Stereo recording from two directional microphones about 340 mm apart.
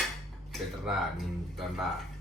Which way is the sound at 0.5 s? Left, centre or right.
Centre.